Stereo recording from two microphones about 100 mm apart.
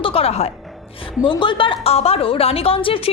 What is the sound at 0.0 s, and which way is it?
Speech, 75° left (ahead or behind).